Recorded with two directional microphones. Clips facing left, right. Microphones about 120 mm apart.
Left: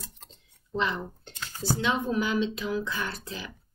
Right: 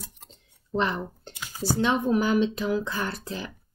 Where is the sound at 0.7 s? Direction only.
45° right (ahead or behind).